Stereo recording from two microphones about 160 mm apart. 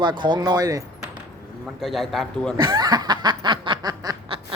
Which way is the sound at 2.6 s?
25° right (ahead or behind).